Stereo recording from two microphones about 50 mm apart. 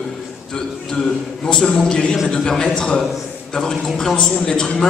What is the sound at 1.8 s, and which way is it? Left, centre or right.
A man's voice, centre.